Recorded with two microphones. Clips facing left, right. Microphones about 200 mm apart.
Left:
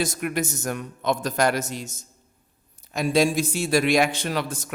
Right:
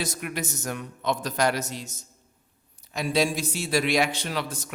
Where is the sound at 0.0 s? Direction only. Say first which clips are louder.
Left 6 dB; 50° left (ahead or behind).